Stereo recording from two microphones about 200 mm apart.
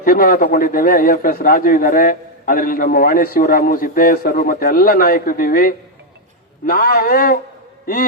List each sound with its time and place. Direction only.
0.0 s a man's voice: 45° left (ahead or behind)